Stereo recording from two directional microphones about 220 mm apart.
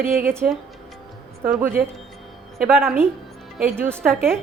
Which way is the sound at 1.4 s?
10° right (ahead or behind).